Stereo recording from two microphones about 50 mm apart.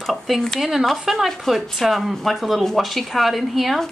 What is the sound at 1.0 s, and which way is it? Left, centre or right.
A woman's voice, centre.